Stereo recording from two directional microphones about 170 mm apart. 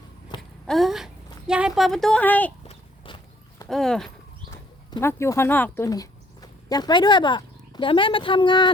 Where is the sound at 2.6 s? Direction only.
30° left (ahead or behind).